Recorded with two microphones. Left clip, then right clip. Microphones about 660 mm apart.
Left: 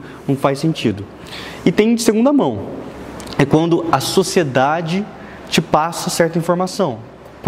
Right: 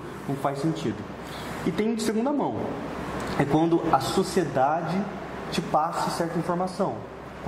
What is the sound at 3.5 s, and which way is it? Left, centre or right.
Speech, left.